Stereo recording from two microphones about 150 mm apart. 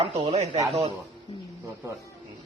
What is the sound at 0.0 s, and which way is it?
Speech, 30° right (ahead or behind).